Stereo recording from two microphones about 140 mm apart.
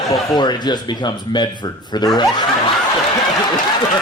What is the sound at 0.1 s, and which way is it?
A man's voice, 30° left (ahead or behind).